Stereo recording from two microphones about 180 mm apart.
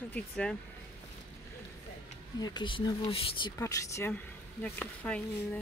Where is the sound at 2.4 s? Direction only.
25° left (ahead or behind).